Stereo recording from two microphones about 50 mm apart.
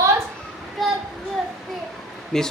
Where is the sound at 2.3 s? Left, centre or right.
Centre.